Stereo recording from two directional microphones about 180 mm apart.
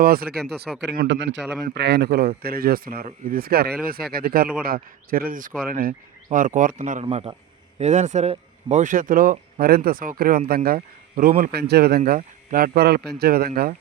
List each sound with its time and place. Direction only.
0.0 s a man's voice: 55° right (ahead or behind)
0.8 s speech: 75° right (ahead or behind)
1.7 s a man's voice: 70° right (ahead or behind); by 7.0 s 45° right (ahead or behind)
7.0 s a man's voice: 35° right (ahead or behind); by 13.7 s 55° right (ahead or behind)